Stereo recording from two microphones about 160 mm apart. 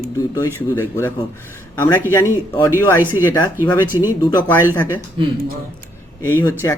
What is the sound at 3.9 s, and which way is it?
Speech, 30° left (ahead or behind).